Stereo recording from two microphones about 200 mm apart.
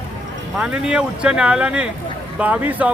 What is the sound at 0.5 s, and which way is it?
Speech, 5° right (ahead or behind).